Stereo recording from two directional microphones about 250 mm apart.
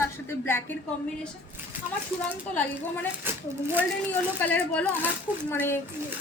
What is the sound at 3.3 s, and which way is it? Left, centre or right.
Speech, centre.